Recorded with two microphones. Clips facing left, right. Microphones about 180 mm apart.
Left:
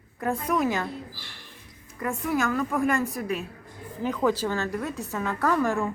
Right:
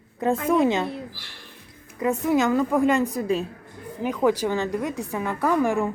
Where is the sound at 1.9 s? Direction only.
20° right (ahead or behind).